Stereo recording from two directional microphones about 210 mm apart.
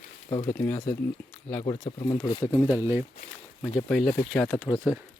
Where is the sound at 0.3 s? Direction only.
25° left (ahead or behind).